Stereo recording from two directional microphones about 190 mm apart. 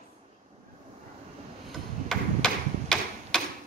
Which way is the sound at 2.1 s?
5° left (ahead or behind).